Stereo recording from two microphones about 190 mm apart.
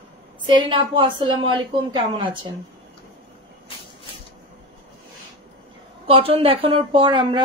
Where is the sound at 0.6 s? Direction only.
25° right (ahead or behind).